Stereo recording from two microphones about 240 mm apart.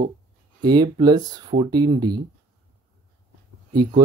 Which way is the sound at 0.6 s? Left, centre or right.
Centre.